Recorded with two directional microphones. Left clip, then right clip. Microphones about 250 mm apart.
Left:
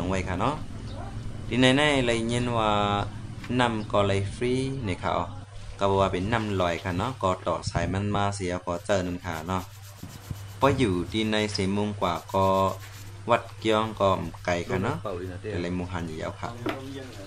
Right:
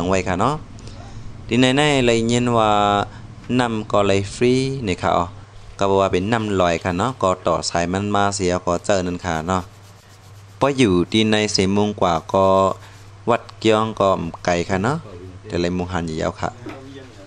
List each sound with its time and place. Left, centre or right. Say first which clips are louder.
0.0 s speech: right 9 dB; right